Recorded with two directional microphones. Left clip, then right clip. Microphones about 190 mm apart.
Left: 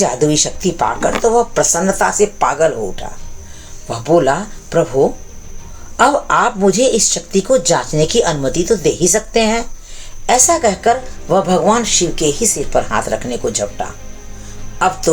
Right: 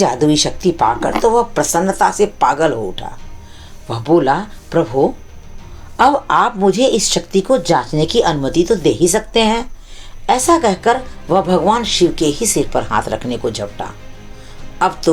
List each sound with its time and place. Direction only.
0.0 s speech: 30° right (ahead or behind)